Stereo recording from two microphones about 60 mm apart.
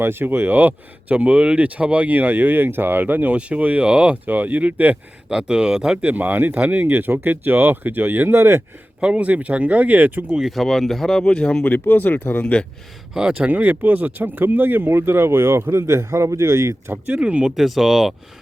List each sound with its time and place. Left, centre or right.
0.0 s speech: right; by 4.2 s centre
4.3 s speech: right
5.3 s speech: centre
6.0 s speech: right
8.3 s speech: right
9.0 s speech: centre
10.3 s speech: centre
11.3 s speech: centre
11.6 s speech: left
13.1 s speech: centre; by 16.9 s right
17.2 s speech: centre
17.6 s speech: centre